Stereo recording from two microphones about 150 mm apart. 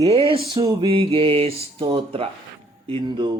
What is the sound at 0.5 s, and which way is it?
Speech, 30° right (ahead or behind).